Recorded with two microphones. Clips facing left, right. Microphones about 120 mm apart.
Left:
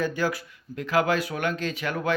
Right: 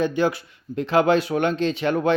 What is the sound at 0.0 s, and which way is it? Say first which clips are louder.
Speech: right 5 dB; 25° right (ahead or behind).